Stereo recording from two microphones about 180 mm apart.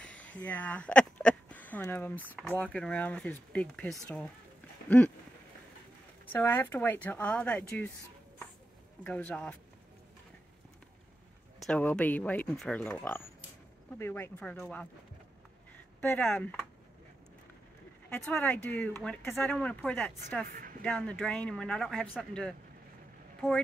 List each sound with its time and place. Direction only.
0.0 s speech: 5° left (ahead or behind)
4.8 s a sound: 10° left (ahead or behind)
6.3 s speech: 10° left (ahead or behind)
9.0 s speech: 5° left (ahead or behind)
11.6 s speech: 5° left (ahead or behind)
13.9 s speech: 15° left (ahead or behind)
16.0 s speech: 10° left (ahead or behind)
18.1 s speech: 10° left (ahead or behind)
20.4 s a sound: 50° right (ahead or behind)
20.8 s speech: 5° left (ahead or behind)